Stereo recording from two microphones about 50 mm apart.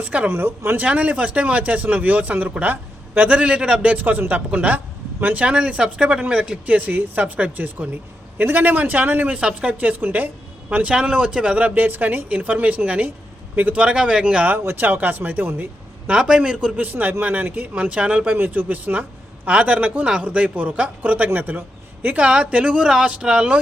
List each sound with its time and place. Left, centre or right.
0.0 s speech: right
0.3 s speech: right
0.8 s speech: right
3.9 s speech: right
9.3 s speech: right
13.8 s speech: centre
14.8 s speech: right
16.0 s speech: centre
16.7 s speech: right
17.7 s speech: right
18.3 s speech: right
22.0 s speech: right